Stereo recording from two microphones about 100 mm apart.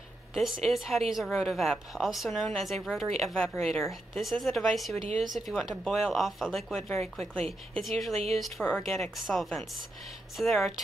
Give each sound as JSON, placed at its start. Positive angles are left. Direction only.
{"t": 0.3, "sound": "a woman's voice", "side_deg": 0}
{"t": 8.1, "sound": "speech", "side_deg": -90}
{"t": 8.4, "sound": "a woman's voice", "side_deg": 5}